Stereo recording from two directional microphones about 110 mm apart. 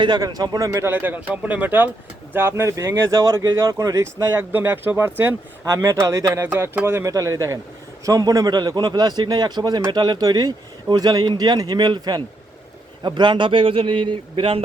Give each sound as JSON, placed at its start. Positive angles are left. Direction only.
{"t": 0.0, "sound": "a man's voice", "side_deg": -40}